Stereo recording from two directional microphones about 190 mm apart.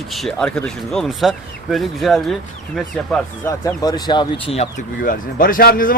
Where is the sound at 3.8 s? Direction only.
20° left (ahead or behind).